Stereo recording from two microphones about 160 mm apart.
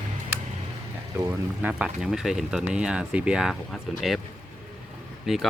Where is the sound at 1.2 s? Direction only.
10° right (ahead or behind).